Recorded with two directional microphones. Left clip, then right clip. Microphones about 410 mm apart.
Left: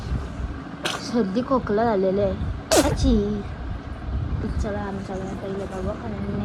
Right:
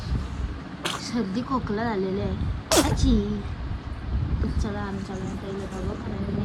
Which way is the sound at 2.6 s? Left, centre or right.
Centre.